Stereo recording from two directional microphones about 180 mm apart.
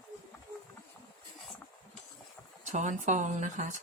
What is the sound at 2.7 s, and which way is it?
Speech, 45° right (ahead or behind).